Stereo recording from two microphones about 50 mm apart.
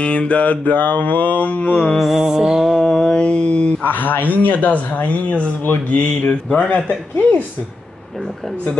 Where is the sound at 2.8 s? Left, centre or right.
Centre.